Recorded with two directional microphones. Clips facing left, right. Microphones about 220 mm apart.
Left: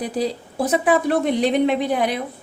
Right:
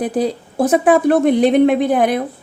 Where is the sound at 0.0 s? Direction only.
55° right (ahead or behind).